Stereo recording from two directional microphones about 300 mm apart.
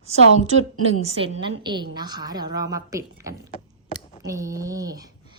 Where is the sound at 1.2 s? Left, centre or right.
Centre.